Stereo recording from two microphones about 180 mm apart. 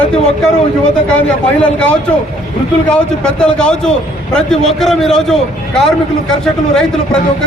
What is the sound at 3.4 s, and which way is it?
A man's voice, 5° left (ahead or behind).